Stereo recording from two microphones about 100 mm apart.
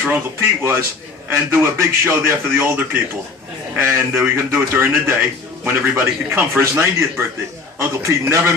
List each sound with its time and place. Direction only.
0.0 s a man's voice: 25° right (ahead or behind)